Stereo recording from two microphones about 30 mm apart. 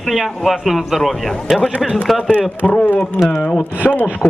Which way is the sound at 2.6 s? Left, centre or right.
Centre.